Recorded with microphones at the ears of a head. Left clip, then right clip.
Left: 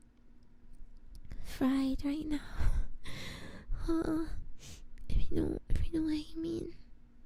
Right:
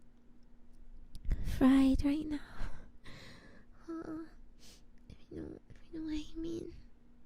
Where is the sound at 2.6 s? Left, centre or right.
Left.